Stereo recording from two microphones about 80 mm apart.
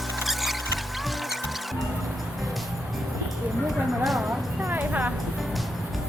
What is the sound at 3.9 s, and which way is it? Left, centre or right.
Speech, centre.